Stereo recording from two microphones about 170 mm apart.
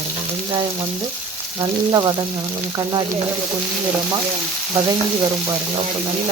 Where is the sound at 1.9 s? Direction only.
25° right (ahead or behind).